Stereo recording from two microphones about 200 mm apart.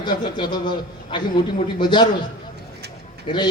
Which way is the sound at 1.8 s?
25° left (ahead or behind).